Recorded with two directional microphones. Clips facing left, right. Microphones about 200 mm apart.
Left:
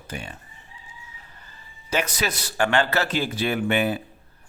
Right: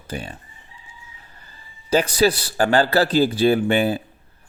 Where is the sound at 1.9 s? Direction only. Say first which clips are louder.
Right 9 dB; 30° right (ahead or behind).